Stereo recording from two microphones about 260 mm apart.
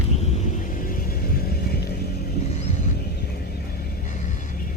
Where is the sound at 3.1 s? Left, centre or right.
Left.